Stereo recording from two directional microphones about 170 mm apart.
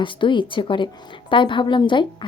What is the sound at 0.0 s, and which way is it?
A woman's voice, 30° left (ahead or behind).